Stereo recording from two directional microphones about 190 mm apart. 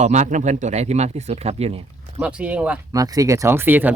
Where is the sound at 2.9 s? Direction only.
20° right (ahead or behind).